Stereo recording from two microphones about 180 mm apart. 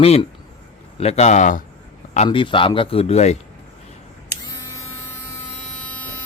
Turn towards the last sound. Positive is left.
turn(degrees=5)  # may be behind; listen again after turning